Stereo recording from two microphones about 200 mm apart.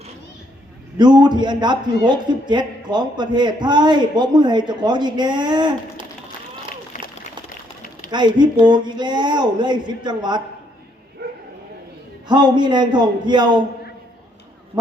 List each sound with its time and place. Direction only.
0.9 s a man's voice: 20° right (ahead or behind)
6.9 s a sound: 40° left (ahead or behind)
8.1 s a man's voice: 20° right (ahead or behind)
11.2 s bow-wow: 55° right (ahead or behind)
12.3 s a man's voice: 20° right (ahead or behind)